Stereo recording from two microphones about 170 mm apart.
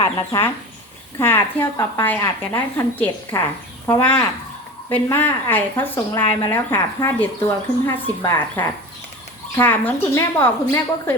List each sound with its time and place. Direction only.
0.0 s speech: 25° left (ahead or behind)
1.2 s speech: 10° left (ahead or behind)